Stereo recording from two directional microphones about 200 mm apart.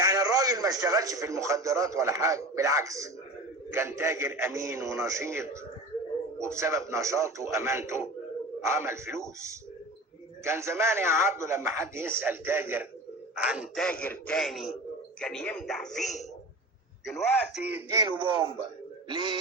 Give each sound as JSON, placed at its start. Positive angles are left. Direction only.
{"t": 0.0, "sound": "a man's voice", "side_deg": -15}
{"t": 18.2, "sound": "speech", "side_deg": -25}